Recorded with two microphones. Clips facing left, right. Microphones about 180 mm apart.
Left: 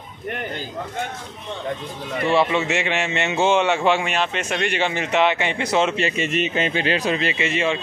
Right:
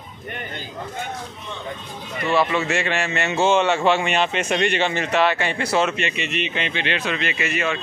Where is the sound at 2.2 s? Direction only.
25° left (ahead or behind).